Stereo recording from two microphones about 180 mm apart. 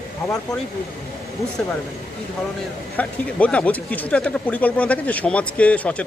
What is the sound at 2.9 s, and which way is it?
Speech, 10° left (ahead or behind).